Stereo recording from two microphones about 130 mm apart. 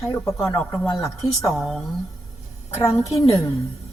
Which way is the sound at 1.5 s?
Centre (ahead or behind).